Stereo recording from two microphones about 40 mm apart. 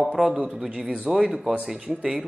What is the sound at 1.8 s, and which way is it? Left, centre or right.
Speech, right.